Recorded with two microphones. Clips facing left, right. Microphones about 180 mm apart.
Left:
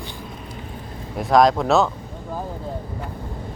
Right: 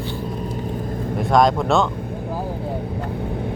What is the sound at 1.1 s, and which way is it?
Speech, centre (ahead or behind).